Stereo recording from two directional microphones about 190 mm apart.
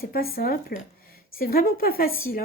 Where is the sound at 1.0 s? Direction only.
50° left (ahead or behind).